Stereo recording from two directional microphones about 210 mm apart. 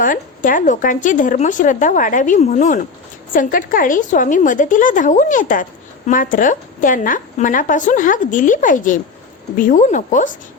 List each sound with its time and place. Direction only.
0.0 s a woman's voice: 40° left (ahead or behind)